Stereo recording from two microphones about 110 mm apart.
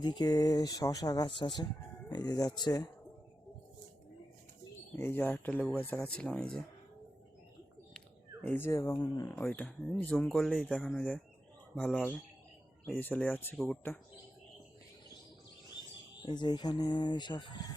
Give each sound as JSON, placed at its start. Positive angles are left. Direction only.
{"t": 0.0, "sound": "speech", "side_deg": 40}
{"t": 4.9, "sound": "speech", "side_deg": 20}
{"t": 7.9, "sound": "a sound", "side_deg": 10}
{"t": 9.0, "sound": "speech", "side_deg": 35}
{"t": 9.3, "sound": "speech", "side_deg": 15}
{"t": 10.2, "sound": "speech", "side_deg": 0}
{"t": 11.7, "sound": "speech", "side_deg": 5}
{"t": 13.0, "sound": "speech", "side_deg": 15}
{"t": 16.2, "sound": "speech", "side_deg": 40}